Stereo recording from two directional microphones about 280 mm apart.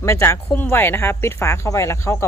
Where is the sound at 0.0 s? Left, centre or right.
Centre.